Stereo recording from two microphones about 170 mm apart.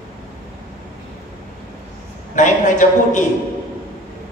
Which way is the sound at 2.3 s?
50° left (ahead or behind).